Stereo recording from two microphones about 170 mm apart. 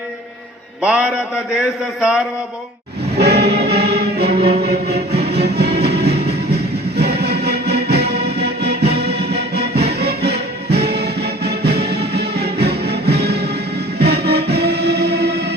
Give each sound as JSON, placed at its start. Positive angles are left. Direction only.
{"t": 0.8, "sound": "a man's voice", "side_deg": -5}
{"t": 3.2, "sound": "music", "side_deg": -75}